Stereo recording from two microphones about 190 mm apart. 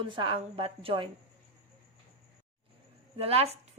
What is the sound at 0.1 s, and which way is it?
A woman's voice, 25° right (ahead or behind).